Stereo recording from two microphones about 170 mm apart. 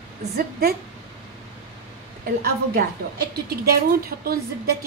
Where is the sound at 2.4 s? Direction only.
65° right (ahead or behind).